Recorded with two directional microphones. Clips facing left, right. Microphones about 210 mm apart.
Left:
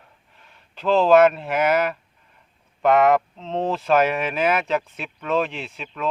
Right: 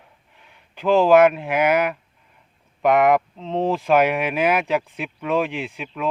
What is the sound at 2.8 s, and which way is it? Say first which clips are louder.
Speech: even; 15° right (ahead or behind).